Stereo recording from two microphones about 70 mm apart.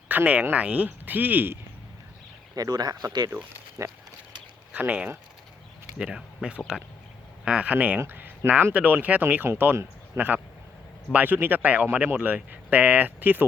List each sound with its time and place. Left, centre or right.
0.1 s speech: right
2.6 s speech: right
3.8 s speech: right
4.7 s speech: right
6.0 s speech: centre